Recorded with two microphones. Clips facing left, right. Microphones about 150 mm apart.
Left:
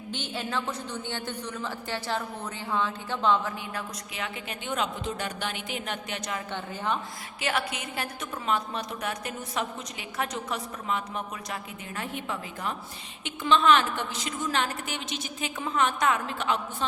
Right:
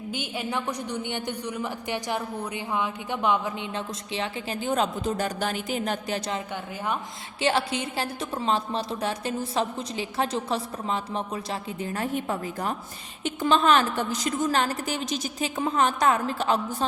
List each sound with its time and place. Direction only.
0.1 s a woman's voice: 10° right (ahead or behind); by 6.4 s 30° right (ahead or behind)
7.4 s a woman's voice: 30° right (ahead or behind)
11.8 s a woman's voice: 40° right (ahead or behind)